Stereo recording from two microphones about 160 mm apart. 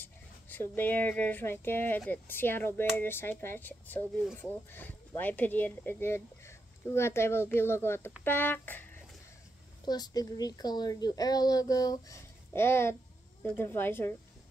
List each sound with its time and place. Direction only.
0.0 s speech: 10° left (ahead or behind)
9.8 s speech: 25° left (ahead or behind)